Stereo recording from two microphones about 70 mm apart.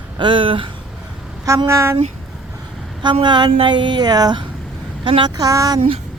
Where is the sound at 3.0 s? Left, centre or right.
Right.